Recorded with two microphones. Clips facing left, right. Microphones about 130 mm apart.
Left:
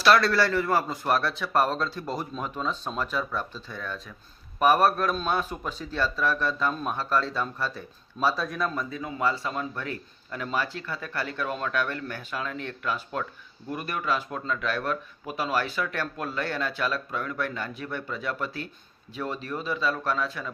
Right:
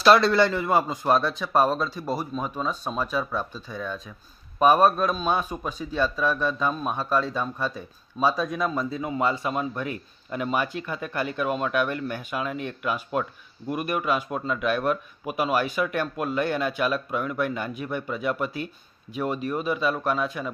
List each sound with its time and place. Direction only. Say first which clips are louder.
0.0 s speech: right 3 dB; 25° right (ahead or behind)